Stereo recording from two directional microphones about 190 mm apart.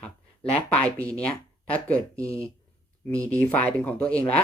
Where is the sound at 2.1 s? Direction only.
15° right (ahead or behind).